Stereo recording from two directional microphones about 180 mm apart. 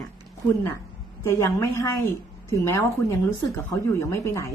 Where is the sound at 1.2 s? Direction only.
15° left (ahead or behind).